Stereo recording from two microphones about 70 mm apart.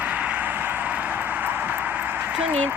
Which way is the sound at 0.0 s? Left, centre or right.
Right.